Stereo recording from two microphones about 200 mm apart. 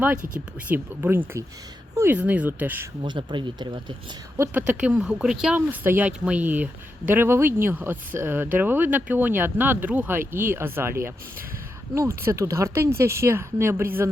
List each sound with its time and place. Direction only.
0.0 s speech: 10° right (ahead or behind)
3.0 s speech: 25° right (ahead or behind)
4.4 s speech: 10° right (ahead or behind)